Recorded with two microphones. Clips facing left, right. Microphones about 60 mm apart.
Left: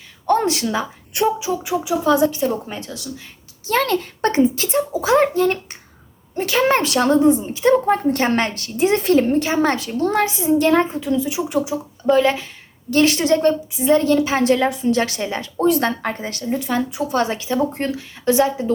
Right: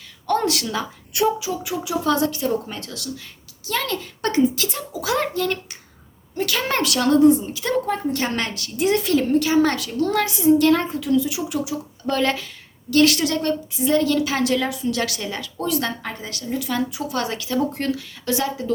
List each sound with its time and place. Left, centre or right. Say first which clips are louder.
0.3 s a woman's voice: left 4 dB; left
3.7 s a woman's voice: left 7 dB; left
7.9 s a woman's voice: left 6 dB; left
12.0 s speech: left 6 dB; centre
12.9 s a woman's voice: left 2 dB; left